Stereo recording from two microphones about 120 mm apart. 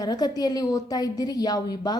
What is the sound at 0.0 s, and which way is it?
A woman's voice, 35° left (ahead or behind).